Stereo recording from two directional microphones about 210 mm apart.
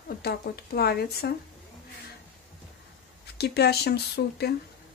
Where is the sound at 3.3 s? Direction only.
50° left (ahead or behind).